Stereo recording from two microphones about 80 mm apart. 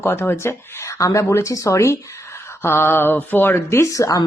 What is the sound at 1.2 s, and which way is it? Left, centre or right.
Speech, left.